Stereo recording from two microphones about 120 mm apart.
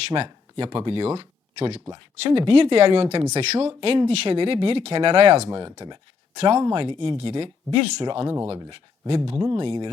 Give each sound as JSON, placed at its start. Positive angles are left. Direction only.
{"t": 0.1, "sound": "speech", "side_deg": -45}
{"t": 3.8, "sound": "speech", "side_deg": -50}
{"t": 5.5, "sound": "speech", "side_deg": -35}
{"t": 8.3, "sound": "speech", "side_deg": -25}